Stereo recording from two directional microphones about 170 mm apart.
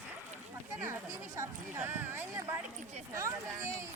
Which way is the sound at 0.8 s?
15° right (ahead or behind).